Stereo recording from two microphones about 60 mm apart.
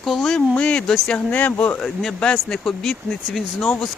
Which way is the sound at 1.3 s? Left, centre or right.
Left.